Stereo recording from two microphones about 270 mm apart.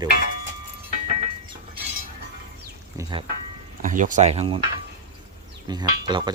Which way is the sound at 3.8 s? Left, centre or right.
Right.